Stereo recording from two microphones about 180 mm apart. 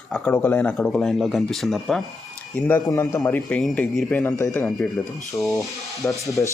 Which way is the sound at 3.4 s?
Centre (ahead or behind).